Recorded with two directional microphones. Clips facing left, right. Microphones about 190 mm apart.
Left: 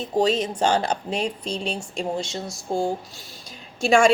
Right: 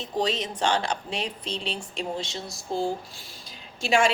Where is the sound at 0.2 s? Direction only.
45° left (ahead or behind).